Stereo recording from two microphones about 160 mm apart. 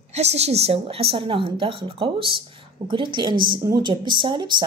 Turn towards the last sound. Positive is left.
turn(degrees=-30)  # may be behind; listen again after turning